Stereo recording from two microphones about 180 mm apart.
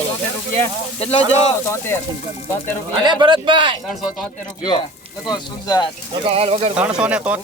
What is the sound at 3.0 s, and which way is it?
Speech, 25° right (ahead or behind).